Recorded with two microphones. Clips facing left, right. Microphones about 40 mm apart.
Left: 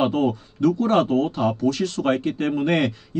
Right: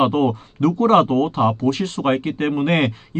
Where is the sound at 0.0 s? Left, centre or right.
Right.